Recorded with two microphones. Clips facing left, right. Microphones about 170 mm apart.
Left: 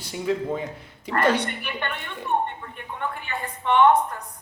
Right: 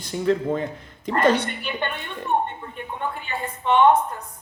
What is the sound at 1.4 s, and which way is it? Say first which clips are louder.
Speech: right 2 dB; 25° right (ahead or behind).